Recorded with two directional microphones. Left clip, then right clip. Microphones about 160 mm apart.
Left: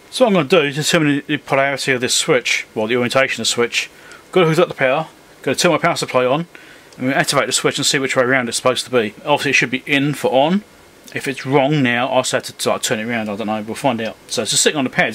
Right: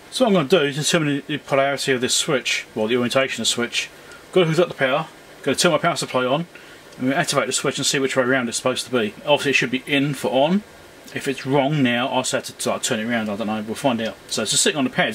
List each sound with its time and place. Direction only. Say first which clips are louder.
0.1 s speech: left 4 dB; 20° left (ahead or behind)